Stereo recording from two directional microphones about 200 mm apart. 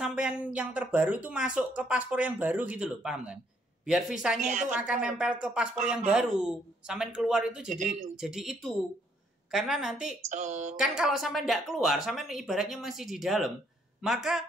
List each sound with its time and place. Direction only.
0.0 s speech: 5° right (ahead or behind)
10.3 s speech: 35° right (ahead or behind)
10.8 s speech: centre (ahead or behind)